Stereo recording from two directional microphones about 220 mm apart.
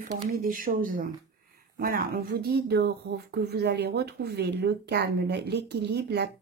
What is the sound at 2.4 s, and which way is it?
Speech, 45° right (ahead or behind).